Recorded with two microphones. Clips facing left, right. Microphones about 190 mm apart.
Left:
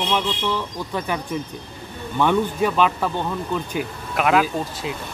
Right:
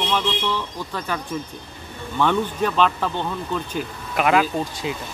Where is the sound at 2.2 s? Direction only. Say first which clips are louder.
Left 2 dB; 10° left (ahead or behind).